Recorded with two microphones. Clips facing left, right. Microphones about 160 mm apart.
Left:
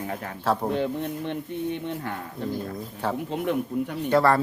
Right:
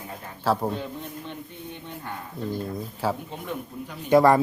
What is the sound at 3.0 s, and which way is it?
Speech, 5° right (ahead or behind).